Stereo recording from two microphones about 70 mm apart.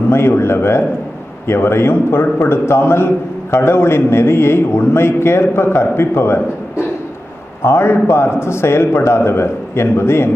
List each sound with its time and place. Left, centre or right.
0.1 s a man's voice: left
7.6 s a man's voice: left